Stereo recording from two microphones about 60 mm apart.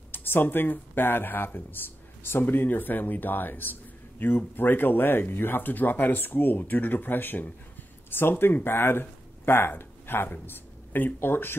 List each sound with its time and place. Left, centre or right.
0.1 s speech: left